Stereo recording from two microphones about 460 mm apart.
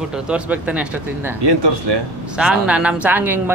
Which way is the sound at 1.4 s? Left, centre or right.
Right.